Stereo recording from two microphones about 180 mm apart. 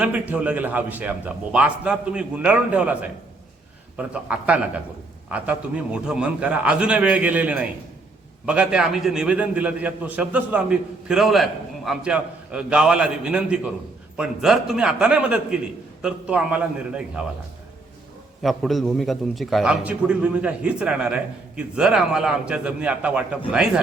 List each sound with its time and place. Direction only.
0.0 s a man's voice: 10° right (ahead or behind)
18.4 s a man's voice: centre (ahead or behind)